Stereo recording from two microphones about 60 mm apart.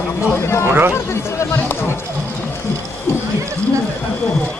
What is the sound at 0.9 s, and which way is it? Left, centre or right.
Speech, left.